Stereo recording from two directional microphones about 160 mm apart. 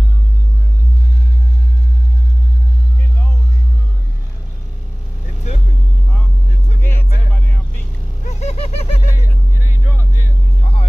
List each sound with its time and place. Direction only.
6.8 s music: 15° left (ahead or behind)
7.3 s vehicle: 10° left (ahead or behind)
8.3 s a sound: 40° left (ahead or behind)
9.1 s music: 15° right (ahead or behind)
10.6 s music: 40° left (ahead or behind)